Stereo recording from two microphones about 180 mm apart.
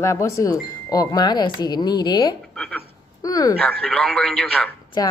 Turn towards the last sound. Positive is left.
turn(degrees=20)  # may be behind; listen again after turning